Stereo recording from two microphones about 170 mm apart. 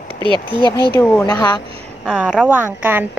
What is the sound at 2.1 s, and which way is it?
A woman's voice, 5° right (ahead or behind).